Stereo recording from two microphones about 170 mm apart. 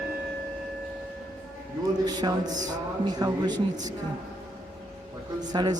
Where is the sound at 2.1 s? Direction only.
25° right (ahead or behind).